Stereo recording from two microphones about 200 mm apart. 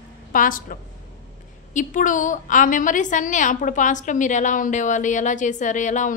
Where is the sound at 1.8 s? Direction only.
40° left (ahead or behind).